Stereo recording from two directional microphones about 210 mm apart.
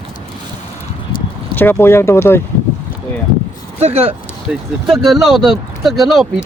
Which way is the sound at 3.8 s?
30° right (ahead or behind).